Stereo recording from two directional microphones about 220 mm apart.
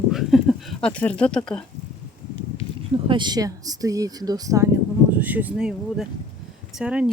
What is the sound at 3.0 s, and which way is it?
Speech, 20° right (ahead or behind).